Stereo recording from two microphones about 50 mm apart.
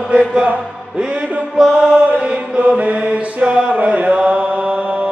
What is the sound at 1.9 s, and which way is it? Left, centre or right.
Chant, right.